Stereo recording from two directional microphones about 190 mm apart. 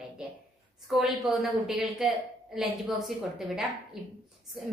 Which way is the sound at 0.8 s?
Centre (ahead or behind).